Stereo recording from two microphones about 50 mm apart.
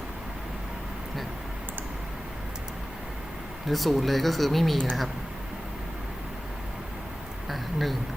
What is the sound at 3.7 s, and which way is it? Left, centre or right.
Speech, centre.